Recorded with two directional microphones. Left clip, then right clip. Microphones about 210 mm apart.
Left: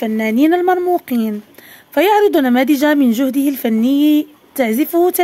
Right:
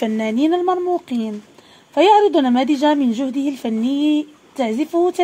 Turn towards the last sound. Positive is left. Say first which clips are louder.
# left 4 dB
turn(degrees=30)  # may be behind; listen again after turning